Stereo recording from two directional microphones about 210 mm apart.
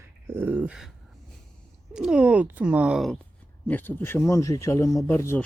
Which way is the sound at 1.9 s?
5° right (ahead or behind).